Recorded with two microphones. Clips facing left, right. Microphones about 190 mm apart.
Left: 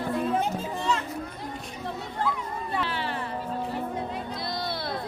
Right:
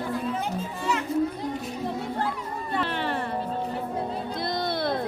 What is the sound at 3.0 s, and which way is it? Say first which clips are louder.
Music: right 3 dB; 40° right (ahead or behind).